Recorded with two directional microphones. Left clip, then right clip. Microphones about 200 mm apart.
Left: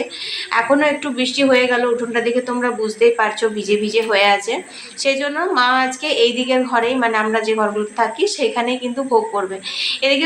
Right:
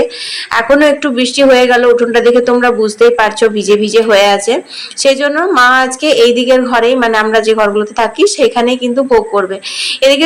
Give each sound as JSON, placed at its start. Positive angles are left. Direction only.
{"t": 0.5, "sound": "a woman's voice", "side_deg": -30}